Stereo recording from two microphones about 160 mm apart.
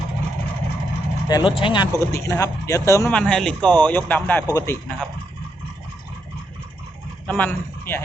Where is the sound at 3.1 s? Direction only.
5° left (ahead or behind).